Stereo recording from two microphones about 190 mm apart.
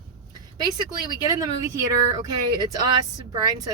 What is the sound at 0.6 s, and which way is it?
Speech, 20° right (ahead or behind).